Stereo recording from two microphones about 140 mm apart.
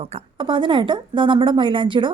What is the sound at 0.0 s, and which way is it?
A woman's voice, 40° right (ahead or behind).